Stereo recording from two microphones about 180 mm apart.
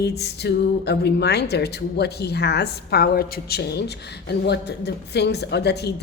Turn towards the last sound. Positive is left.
turn(degrees=65)  # may be behind; listen again after turning